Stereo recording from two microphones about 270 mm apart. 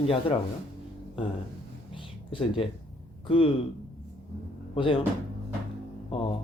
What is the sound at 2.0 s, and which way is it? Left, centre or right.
Speech, centre.